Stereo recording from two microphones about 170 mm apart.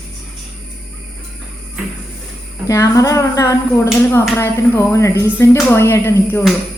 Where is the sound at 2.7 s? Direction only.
20° left (ahead or behind).